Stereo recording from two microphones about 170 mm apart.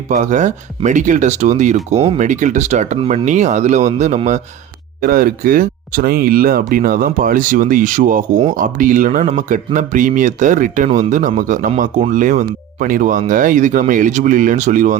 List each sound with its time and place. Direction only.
0.1 s speech: 45° right (ahead or behind)
4.9 s speech: 55° right (ahead or behind)